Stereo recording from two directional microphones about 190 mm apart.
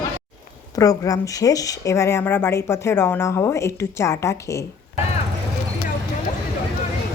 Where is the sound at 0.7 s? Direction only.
20° left (ahead or behind).